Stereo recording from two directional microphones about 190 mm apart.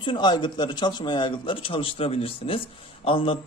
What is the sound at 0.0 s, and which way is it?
A man's voice, 25° left (ahead or behind).